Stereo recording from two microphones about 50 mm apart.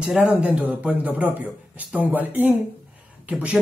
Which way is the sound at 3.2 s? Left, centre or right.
Right.